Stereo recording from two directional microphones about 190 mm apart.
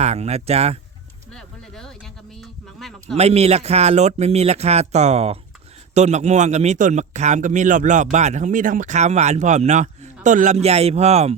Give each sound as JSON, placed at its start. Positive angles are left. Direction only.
{"t": 0.0, "sound": "a man's voice", "side_deg": -35}
{"t": 1.3, "sound": "speech", "side_deg": 0}
{"t": 3.2, "sound": "a man's voice", "side_deg": -35}